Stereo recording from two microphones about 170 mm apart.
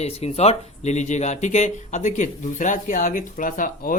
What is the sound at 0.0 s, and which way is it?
Speech, 40° left (ahead or behind).